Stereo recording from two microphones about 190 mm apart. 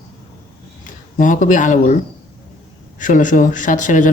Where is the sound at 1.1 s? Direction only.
40° left (ahead or behind).